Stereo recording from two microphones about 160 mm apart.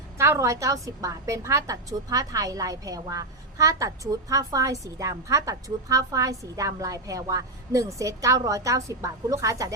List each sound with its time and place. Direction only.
0.2 s a woman's voice: 20° right (ahead or behind)